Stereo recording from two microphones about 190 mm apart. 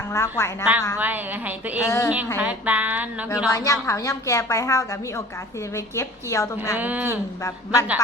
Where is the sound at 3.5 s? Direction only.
15° left (ahead or behind).